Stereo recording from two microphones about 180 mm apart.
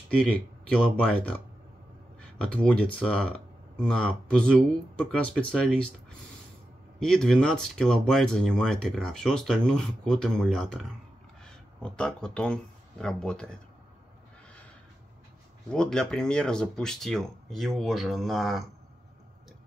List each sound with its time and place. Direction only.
0.2 s speech: 5° left (ahead or behind)
2.4 s speech: 5° left (ahead or behind)
15.7 s speech: 5° left (ahead or behind)